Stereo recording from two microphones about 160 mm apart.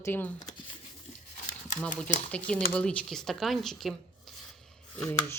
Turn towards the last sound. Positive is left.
turn(degrees=20)  # may be behind; listen again after turning